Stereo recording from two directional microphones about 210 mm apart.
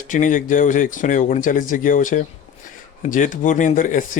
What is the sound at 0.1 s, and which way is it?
A man's voice, 40° left (ahead or behind).